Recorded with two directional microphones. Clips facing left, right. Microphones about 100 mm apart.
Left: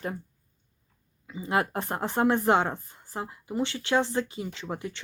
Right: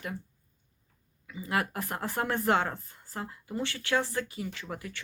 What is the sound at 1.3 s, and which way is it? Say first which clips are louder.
Speech: left 4 dB; 25° left (ahead or behind).